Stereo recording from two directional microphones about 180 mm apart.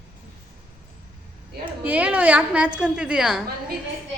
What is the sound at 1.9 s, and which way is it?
A woman's voice, 10° right (ahead or behind).